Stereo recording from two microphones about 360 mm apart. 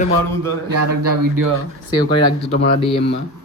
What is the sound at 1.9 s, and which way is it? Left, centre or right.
A man's voice, centre.